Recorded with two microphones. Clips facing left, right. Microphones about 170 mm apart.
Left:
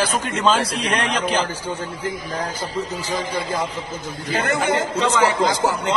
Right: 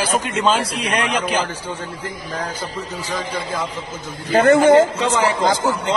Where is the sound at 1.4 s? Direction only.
35° left (ahead or behind).